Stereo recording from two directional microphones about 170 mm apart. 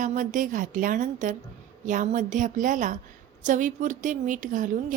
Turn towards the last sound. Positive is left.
turn(degrees=-50)  # may be behind; listen again after turning